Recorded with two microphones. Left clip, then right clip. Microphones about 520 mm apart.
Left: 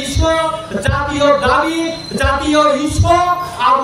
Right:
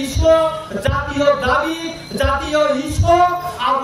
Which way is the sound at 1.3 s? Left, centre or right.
Right.